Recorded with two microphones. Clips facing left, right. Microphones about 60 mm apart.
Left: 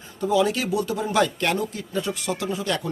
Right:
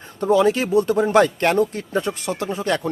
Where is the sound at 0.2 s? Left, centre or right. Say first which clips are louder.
Right 4 dB; right.